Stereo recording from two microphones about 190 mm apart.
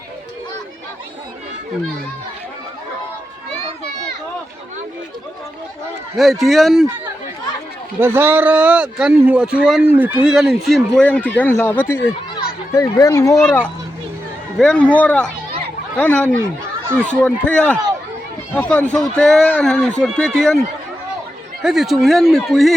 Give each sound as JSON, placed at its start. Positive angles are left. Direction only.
{"t": 6.4, "sound": "speech", "side_deg": 0}
{"t": 7.9, "sound": "a man's voice", "side_deg": -10}
{"t": 13.4, "sound": "a man's voice", "side_deg": 5}